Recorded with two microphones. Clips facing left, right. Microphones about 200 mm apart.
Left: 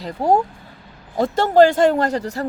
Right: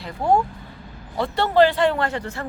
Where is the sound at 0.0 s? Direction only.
40° left (ahead or behind).